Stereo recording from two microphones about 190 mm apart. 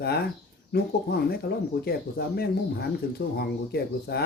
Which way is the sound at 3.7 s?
60° left (ahead or behind).